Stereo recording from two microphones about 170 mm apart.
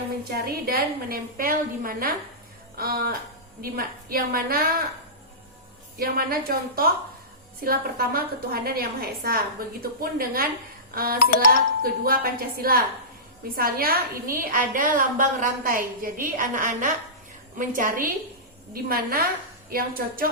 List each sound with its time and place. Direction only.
0.3 s a woman's voice: 65° right (ahead or behind)
6.0 s a woman's voice: 60° right (ahead or behind)